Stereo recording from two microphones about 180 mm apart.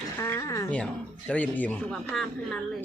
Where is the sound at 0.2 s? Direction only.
15° left (ahead or behind).